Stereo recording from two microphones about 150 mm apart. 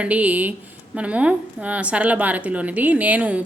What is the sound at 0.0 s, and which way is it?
A woman's voice, 10° right (ahead or behind).